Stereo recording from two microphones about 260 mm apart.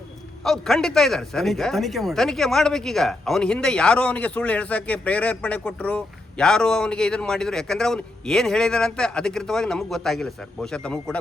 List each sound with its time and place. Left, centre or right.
0.4 s speech: centre